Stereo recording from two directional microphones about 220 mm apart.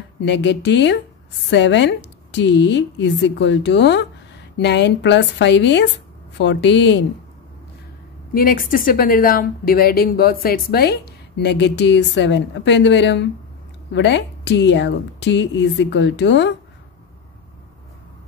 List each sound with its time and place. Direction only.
0.2 s a woman's voice: 50° left (ahead or behind)
8.4 s a woman's voice: 40° left (ahead or behind)